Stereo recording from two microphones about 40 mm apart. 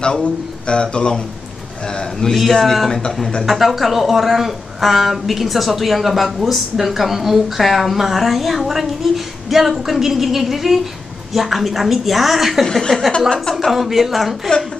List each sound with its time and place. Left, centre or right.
0.0 s a man's voice: left
2.3 s a woman's voice: centre
3.4 s a woman's voice: centre
13.3 s a woman's voice: centre
13.7 s a woman's voice: centre